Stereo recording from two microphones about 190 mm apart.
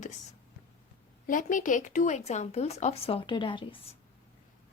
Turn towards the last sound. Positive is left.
turn(degrees=25)  # may be behind; listen again after turning